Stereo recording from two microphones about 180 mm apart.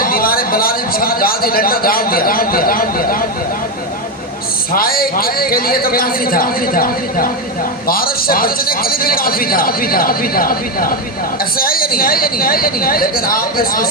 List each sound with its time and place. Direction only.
0.0 s a man's voice: 55° left (ahead or behind)
4.7 s a man's voice: 55° left (ahead or behind)